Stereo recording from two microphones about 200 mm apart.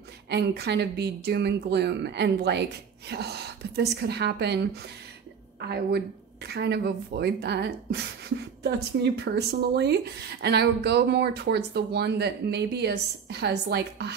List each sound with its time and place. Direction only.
0.3 s speech: 55° right (ahead or behind)